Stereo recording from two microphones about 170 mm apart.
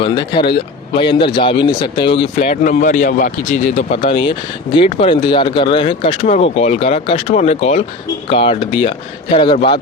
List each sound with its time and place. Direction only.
0.0 s speech: 30° left (ahead or behind)
2.4 s speech: 45° left (ahead or behind)
3.9 s speech: 30° left (ahead or behind)
6.2 s speech: 45° left (ahead or behind)